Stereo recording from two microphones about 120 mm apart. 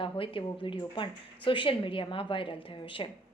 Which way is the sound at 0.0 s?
45° left (ahead or behind).